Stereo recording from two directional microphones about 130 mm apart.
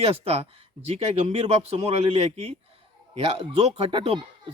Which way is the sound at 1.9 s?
50° right (ahead or behind).